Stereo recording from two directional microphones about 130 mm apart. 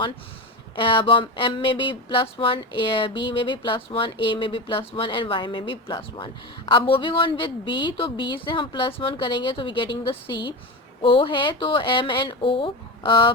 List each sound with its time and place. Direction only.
0.8 s speech: 40° left (ahead or behind)